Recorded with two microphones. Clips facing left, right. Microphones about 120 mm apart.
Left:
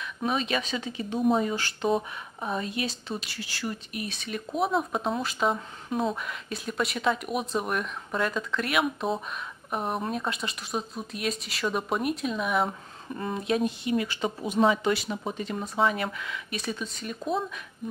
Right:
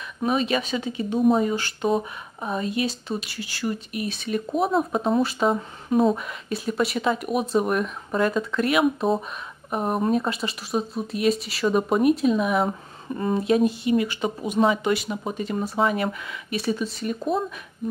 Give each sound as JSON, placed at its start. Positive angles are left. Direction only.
{"t": 0.2, "sound": "speech", "side_deg": -5}
{"t": 4.2, "sound": "speech", "side_deg": 0}
{"t": 13.9, "sound": "speech", "side_deg": -15}